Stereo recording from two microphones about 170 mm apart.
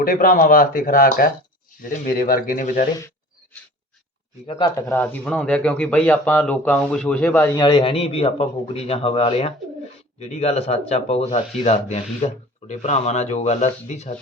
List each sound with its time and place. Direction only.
0.0 s speech: 55° left (ahead or behind)
4.4 s speech: 30° left (ahead or behind)
4.9 s a man's voice: 5° left (ahead or behind); by 14.2 s 40° left (ahead or behind)